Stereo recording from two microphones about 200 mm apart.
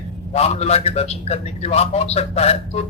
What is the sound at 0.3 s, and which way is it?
A man's voice, 30° left (ahead or behind).